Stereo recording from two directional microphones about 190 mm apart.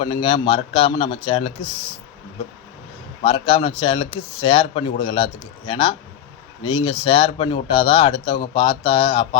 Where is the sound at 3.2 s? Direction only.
25° left (ahead or behind).